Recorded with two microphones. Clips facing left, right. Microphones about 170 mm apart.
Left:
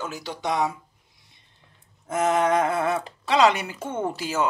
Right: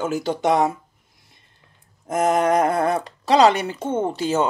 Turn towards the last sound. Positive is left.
turn(degrees=-30)  # may be behind; listen again after turning